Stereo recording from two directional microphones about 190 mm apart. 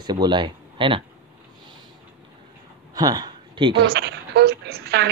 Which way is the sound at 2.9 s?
20° right (ahead or behind).